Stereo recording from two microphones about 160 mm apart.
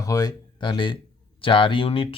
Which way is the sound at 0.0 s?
20° left (ahead or behind).